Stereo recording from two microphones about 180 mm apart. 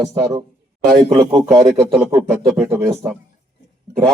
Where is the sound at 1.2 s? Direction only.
30° right (ahead or behind).